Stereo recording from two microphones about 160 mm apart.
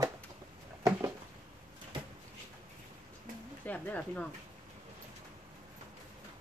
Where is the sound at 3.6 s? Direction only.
10° left (ahead or behind).